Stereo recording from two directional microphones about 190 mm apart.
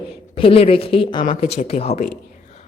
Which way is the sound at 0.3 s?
30° left (ahead or behind).